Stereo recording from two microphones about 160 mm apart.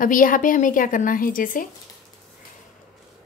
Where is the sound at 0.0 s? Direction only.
55° left (ahead or behind).